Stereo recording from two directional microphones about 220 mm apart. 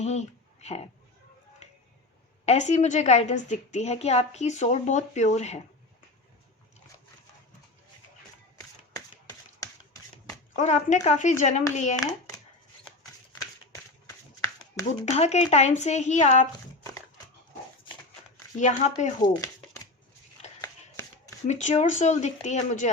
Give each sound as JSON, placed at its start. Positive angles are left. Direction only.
{"t": 0.0, "sound": "speech", "side_deg": 30}
{"t": 1.6, "sound": "a sound", "side_deg": 30}
{"t": 2.5, "sound": "a woman's voice", "side_deg": 30}
{"t": 10.5, "sound": "a woman's voice", "side_deg": 35}
{"t": 15.1, "sound": "a woman's voice", "side_deg": 30}
{"t": 18.5, "sound": "a woman's voice", "side_deg": 35}
{"t": 19.2, "sound": "a sound", "side_deg": 15}
{"t": 21.4, "sound": "a woman's voice", "side_deg": 30}